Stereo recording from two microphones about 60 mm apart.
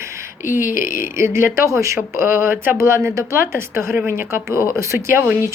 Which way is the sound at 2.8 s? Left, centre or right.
Right.